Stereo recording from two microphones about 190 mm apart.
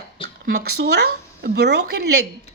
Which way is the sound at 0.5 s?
60° right (ahead or behind).